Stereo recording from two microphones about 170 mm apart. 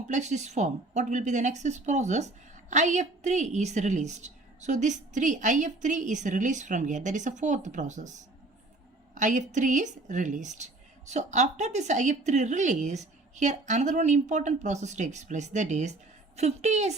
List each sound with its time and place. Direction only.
0.1 s a woman's voice: 45° right (ahead or behind)